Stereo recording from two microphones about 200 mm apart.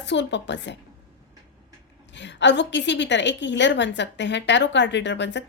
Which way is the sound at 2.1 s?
60° left (ahead or behind).